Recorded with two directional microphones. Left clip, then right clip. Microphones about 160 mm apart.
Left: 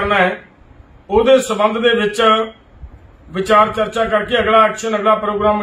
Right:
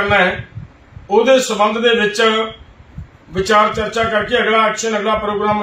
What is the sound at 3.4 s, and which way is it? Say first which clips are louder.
A man's voice: left 1 dB; 5° left (ahead or behind).